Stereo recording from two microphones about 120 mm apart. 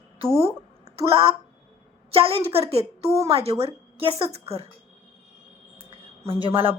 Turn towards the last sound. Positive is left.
turn(degrees=-50)  # may be behind; listen again after turning